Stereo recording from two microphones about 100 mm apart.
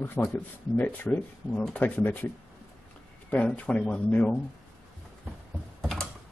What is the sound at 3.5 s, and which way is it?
Speech, 10° left (ahead or behind).